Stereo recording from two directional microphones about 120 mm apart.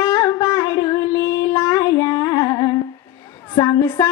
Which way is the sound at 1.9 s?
35° left (ahead or behind).